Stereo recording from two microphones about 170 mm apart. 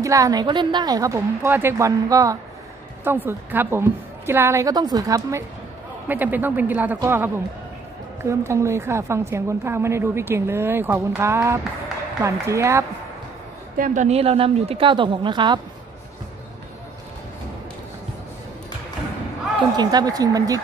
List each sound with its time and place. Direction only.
0.0 s a woman's voice: 20° right (ahead or behind)
13.7 s a woman's voice: 50° right (ahead or behind); by 15.6 s 25° right (ahead or behind)
19.8 s a woman's voice: 25° right (ahead or behind)